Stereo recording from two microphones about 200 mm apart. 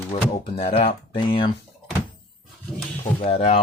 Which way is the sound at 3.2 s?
30° left (ahead or behind).